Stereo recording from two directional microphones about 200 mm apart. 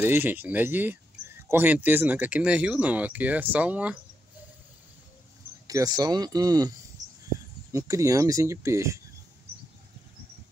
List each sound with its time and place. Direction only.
0.0 s speech: 10° right (ahead or behind)
5.7 s speech: 20° right (ahead or behind)
7.0 s a sound: 15° right (ahead or behind)
7.7 s speech: 15° right (ahead or behind)